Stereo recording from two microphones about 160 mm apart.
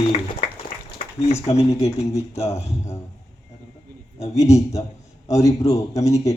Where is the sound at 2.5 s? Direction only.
15° left (ahead or behind).